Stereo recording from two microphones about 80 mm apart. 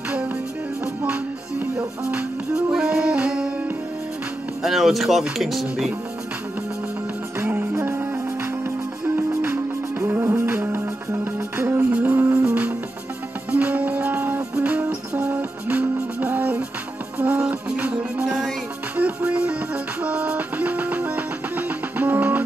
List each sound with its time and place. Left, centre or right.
1.0 s music: centre
4.6 s speech: centre
7.3 s music: right
11.9 s music: centre